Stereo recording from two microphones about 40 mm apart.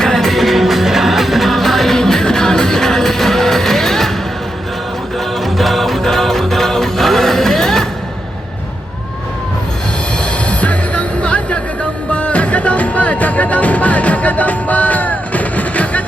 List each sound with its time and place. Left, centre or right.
0.0 s music: centre
0.3 s music: centre
5.4 s music: centre
10.2 s music: left